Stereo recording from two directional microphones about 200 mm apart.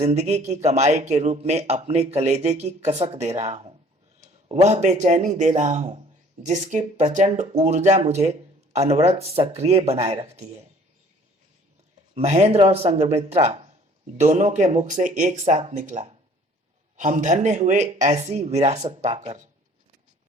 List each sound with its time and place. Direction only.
0.0 s speech: 35° right (ahead or behind)
12.1 s speech: 35° right (ahead or behind)